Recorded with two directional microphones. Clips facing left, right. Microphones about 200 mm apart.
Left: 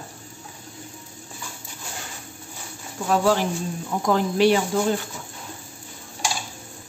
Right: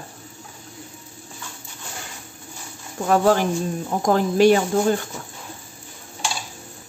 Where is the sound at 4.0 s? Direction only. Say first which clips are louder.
Right 3 dB; 45° right (ahead or behind).